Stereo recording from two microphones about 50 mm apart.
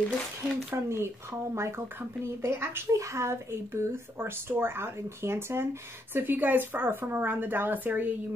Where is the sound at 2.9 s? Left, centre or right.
Right.